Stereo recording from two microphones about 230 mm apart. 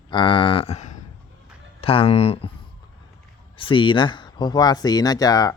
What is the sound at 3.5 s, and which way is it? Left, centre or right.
Speech, left.